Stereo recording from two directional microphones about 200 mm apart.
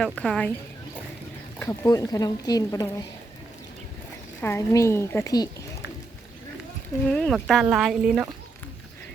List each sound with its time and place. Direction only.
0.0 s speech: 5° left (ahead or behind)
1.5 s speech: 15° left (ahead or behind)
4.4 s speech: 15° left (ahead or behind)
7.1 s speech: centre (ahead or behind)